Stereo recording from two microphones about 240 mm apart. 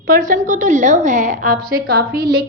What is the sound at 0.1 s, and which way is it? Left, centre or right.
A woman's voice, right.